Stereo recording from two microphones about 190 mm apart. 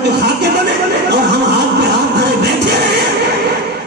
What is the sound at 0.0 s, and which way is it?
Music, 60° right (ahead or behind).